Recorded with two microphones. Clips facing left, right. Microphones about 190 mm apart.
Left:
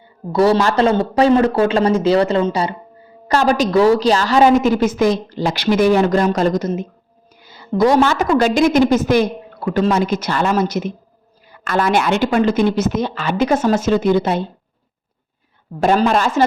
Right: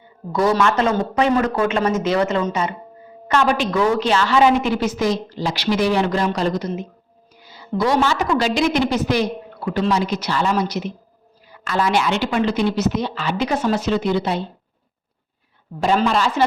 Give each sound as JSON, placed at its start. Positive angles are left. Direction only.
{"t": 0.3, "sound": "a man's voice", "side_deg": 30}
{"t": 15.8, "sound": "a woman's voice", "side_deg": 45}